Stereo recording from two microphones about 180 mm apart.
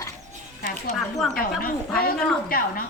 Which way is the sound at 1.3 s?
55° left (ahead or behind).